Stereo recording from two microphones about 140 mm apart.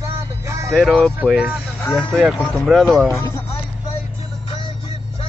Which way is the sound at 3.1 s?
20° left (ahead or behind).